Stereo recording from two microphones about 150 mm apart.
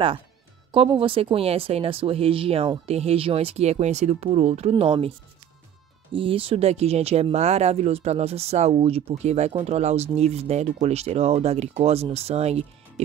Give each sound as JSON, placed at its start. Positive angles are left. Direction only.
{"t": 0.7, "sound": "speech", "side_deg": -35}
{"t": 6.1, "sound": "speech", "side_deg": -35}